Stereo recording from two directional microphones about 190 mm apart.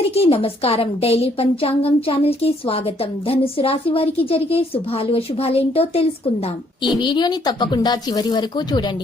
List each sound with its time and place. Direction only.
0.1 s a woman's voice: 30° left (ahead or behind)